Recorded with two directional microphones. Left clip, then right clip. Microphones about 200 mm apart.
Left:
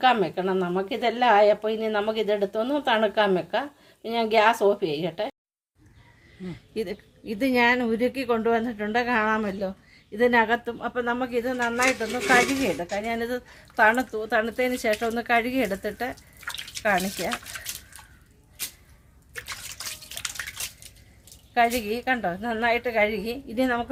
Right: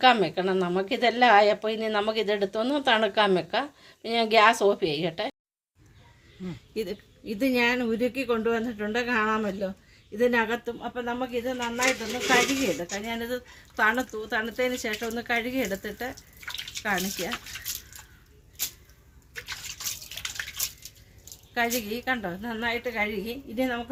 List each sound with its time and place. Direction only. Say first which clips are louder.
0.0 s speech: right 1 dB; 5° right (ahead or behind)
6.5 s speech: left 2 dB; 15° left (ahead or behind); by 11.9 s 35° left (ahead or behind)
12.7 s speech: left 4 dB; 20° left (ahead or behind); by 17.2 s 35° left (ahead or behind)
21.5 s speech: left 5 dB; 30° left (ahead or behind)